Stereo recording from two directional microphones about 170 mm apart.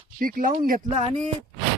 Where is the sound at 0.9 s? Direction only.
40° right (ahead or behind).